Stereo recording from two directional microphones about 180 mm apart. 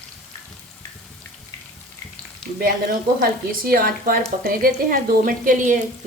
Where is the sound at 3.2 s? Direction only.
55° right (ahead or behind).